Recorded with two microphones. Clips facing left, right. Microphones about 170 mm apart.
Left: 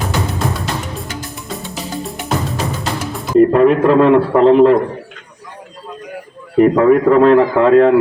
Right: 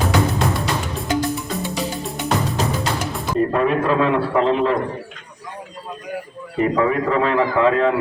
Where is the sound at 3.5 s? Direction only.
60° left (ahead or behind).